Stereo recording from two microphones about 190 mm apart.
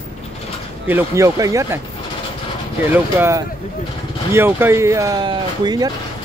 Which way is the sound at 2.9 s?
15° right (ahead or behind).